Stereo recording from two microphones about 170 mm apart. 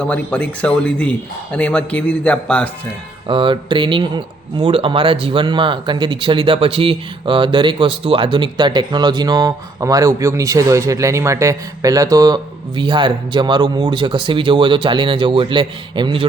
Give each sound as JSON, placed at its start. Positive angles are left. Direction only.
{"t": 0.0, "sound": "speech", "side_deg": 5}
{"t": 3.2, "sound": "speech", "side_deg": -30}